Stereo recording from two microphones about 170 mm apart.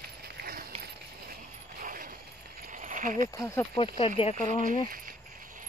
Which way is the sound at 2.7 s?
50° right (ahead or behind).